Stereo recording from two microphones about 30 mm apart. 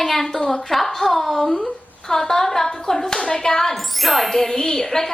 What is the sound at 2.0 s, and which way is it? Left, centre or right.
A woman's voice, centre.